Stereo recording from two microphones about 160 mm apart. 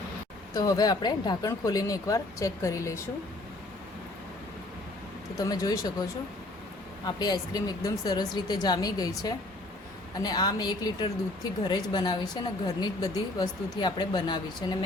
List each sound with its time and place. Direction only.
0.5 s speech: 20° left (ahead or behind)
5.4 s speech: 25° left (ahead or behind)
7.2 s speech: 25° left (ahead or behind)